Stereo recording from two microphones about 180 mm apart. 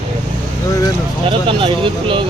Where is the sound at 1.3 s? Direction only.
30° right (ahead or behind).